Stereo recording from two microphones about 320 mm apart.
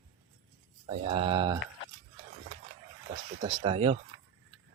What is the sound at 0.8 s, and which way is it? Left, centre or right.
Speech, centre.